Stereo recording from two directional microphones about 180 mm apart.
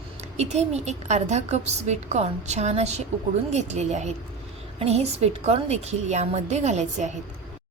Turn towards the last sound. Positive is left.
turn(degrees=-40)  # may be behind; listen again after turning